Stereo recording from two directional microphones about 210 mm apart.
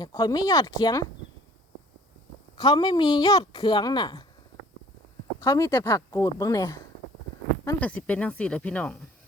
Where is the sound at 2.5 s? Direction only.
20° left (ahead or behind).